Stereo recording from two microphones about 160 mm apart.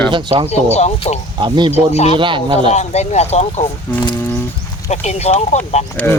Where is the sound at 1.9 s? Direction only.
40° left (ahead or behind).